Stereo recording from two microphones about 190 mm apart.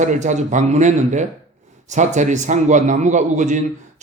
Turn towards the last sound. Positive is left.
turn(degrees=-40)  # may be behind; listen again after turning